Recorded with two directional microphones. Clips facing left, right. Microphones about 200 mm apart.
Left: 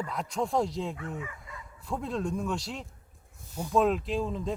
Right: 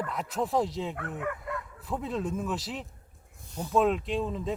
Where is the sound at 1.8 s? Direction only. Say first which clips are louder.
Left 1 dB; centre (ahead or behind).